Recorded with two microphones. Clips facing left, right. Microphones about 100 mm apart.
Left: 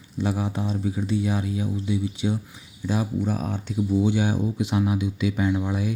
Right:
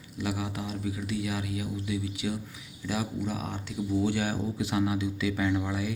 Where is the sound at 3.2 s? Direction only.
40° left (ahead or behind).